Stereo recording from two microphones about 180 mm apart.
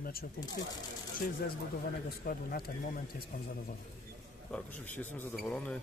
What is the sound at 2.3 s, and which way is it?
Speech, 55° left (ahead or behind).